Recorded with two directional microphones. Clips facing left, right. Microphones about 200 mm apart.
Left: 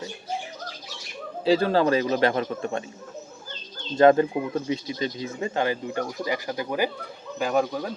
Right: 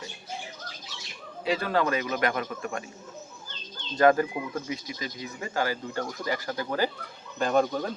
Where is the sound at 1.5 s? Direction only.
30° left (ahead or behind).